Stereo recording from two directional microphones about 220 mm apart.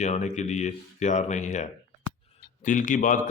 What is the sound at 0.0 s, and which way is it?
Speech, 30° left (ahead or behind).